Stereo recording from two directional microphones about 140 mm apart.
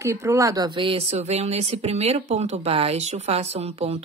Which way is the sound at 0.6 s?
40° right (ahead or behind).